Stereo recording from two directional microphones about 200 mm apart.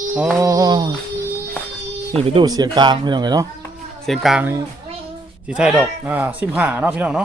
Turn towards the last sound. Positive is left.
turn(degrees=-5)  # may be behind; listen again after turning